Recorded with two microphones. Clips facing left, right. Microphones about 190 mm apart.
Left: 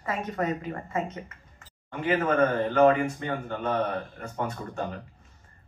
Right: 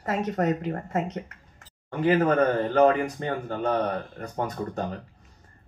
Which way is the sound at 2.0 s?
35° right (ahead or behind).